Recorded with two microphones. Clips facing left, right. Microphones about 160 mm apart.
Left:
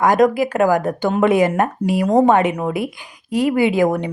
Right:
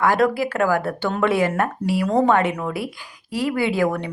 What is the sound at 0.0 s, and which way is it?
Speech, 15° left (ahead or behind).